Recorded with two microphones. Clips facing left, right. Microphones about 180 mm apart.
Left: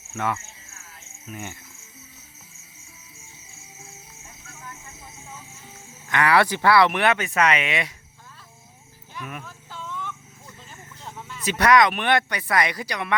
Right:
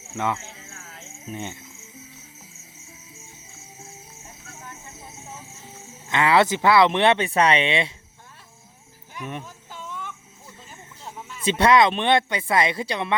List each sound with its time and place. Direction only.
0.1 s speech: 20° right (ahead or behind)
0.3 s music: 75° right (ahead or behind)
1.3 s speech: 20° right (ahead or behind)
4.6 s a sound: 25° right (ahead or behind)
6.1 s speech: 20° right (ahead or behind)
9.1 s a sound: 25° right (ahead or behind); by 11.4 s 5° right (ahead or behind)
11.4 s speech: 25° right (ahead or behind)